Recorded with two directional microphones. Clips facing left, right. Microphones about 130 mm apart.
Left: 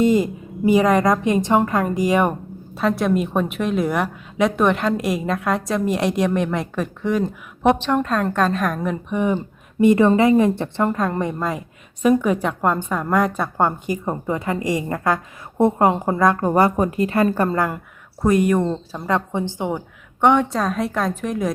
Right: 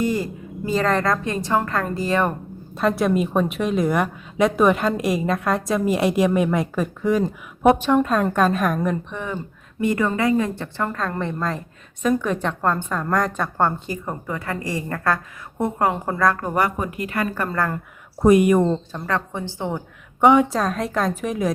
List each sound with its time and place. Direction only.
0.0 s a woman's voice: 20° left (ahead or behind)
2.7 s a woman's voice: centre (ahead or behind)
9.1 s a woman's voice: 15° left (ahead or behind)
16.5 s a woman's voice: 30° left (ahead or behind)
18.2 s speech: 10° right (ahead or behind)
18.6 s a woman's voice: 5° left (ahead or behind)
19.0 s a woman's voice: 20° left (ahead or behind)
20.2 s a woman's voice: 5° right (ahead or behind)